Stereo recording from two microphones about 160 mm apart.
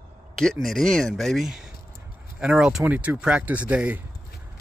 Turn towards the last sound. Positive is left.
turn(degrees=-10)  # may be behind; listen again after turning